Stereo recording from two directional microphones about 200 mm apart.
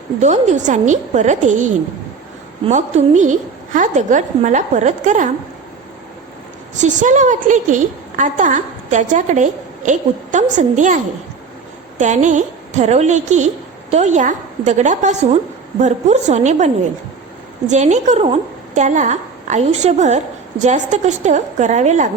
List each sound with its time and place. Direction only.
0.2 s a woman's voice: 35° right (ahead or behind)
6.7 s a woman's voice: 35° right (ahead or behind)